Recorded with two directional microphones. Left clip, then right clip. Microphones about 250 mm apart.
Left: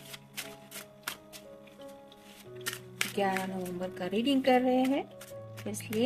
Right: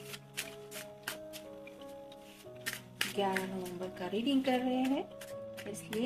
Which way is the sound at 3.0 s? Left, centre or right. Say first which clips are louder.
Left 3 dB; left.